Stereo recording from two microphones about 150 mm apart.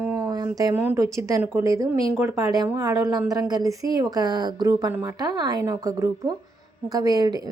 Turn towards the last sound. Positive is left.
turn(degrees=-25)  # may be behind; listen again after turning